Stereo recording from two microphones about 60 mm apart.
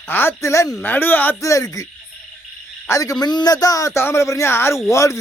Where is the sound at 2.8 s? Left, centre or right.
Left.